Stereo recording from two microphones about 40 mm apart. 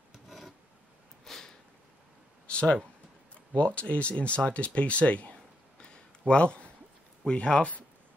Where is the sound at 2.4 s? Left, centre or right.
Left.